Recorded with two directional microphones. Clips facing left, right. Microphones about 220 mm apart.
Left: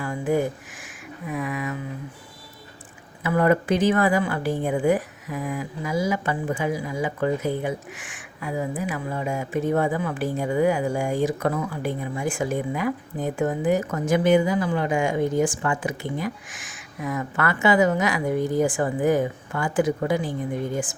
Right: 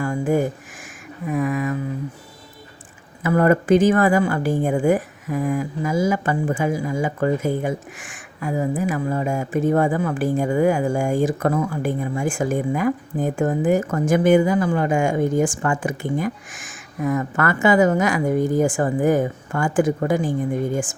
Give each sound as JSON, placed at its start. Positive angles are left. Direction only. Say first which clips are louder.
{"t": 0.0, "sound": "a sound", "louder": "right 3 dB", "side_deg": -45}
{"t": 1.3, "sound": "speech", "louder": "right 6 dB", "side_deg": -45}
{"t": 3.2, "sound": "speech", "louder": "right 4 dB", "side_deg": -45}